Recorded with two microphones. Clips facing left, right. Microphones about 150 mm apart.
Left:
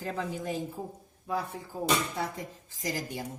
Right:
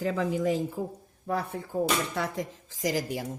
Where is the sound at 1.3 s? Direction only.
60° right (ahead or behind); by 3.2 s 90° right.